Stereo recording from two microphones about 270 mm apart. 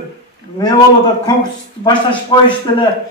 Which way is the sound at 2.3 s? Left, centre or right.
Centre.